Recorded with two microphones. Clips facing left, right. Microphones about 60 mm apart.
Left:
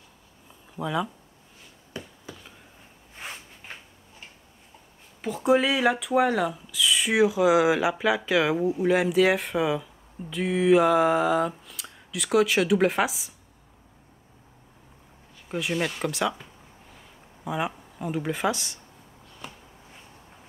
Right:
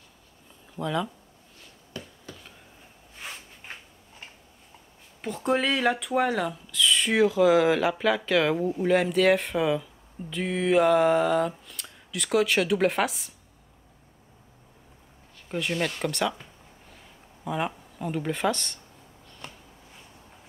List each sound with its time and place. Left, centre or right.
0.7 s speech: centre
2.0 s a sound: centre
5.2 s speech: centre
15.4 s speech: centre
17.5 s speech: centre
19.2 s a sound: centre